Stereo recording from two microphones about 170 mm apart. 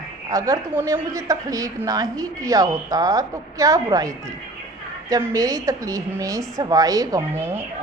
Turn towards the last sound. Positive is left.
turn(degrees=-15)  # may be behind; listen again after turning